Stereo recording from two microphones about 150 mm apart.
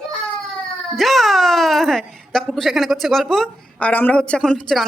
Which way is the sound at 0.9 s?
Centre (ahead or behind).